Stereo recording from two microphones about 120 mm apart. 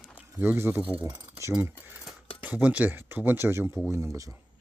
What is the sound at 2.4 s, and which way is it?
Speech, 10° right (ahead or behind).